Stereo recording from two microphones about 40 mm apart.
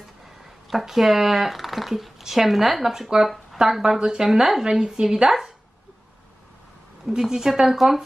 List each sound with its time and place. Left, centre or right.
0.7 s speech: centre
7.1 s speech: centre